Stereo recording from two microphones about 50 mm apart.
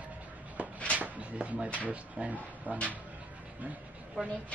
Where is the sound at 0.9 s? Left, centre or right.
Right.